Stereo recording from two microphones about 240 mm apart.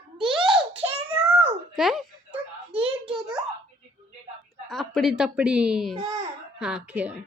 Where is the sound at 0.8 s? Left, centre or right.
Centre.